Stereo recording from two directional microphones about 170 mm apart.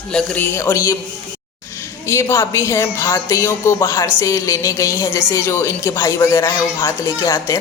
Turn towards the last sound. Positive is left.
turn(degrees=15)  # may be behind; listen again after turning